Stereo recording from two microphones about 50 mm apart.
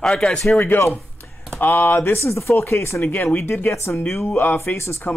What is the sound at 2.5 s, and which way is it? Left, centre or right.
Speech, left.